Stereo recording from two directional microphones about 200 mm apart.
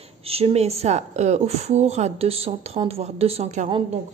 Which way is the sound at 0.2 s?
30° right (ahead or behind).